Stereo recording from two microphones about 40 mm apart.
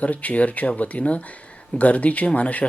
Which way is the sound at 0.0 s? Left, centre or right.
Left.